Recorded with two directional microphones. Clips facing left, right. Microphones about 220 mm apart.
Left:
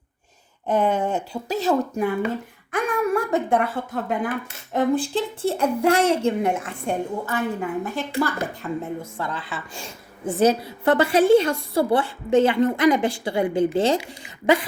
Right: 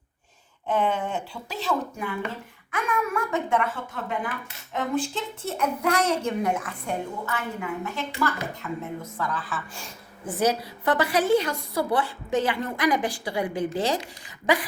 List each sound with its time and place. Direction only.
0.7 s a woman's voice: 40° left (ahead or behind); by 14.7 s 25° left (ahead or behind)